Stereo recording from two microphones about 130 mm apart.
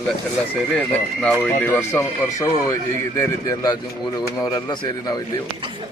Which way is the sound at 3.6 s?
30° left (ahead or behind).